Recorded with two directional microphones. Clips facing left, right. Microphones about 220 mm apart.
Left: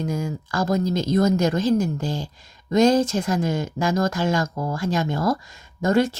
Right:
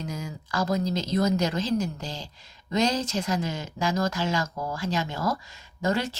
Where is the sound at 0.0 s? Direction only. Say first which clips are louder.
Left 8 dB; 50° left (ahead or behind).